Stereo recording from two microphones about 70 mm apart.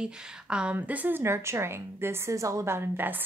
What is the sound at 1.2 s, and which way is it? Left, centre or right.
A woman's voice, right.